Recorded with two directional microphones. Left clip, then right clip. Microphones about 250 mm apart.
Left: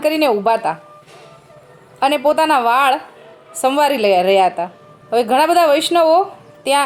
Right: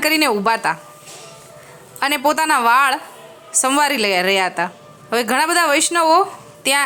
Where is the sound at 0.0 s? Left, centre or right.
Right.